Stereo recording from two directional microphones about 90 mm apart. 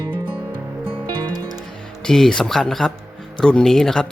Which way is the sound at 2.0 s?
5° left (ahead or behind).